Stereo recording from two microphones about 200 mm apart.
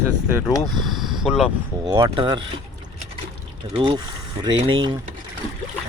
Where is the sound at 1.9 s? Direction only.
20° right (ahead or behind).